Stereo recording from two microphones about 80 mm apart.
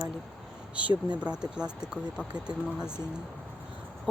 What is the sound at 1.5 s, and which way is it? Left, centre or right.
Speech, centre.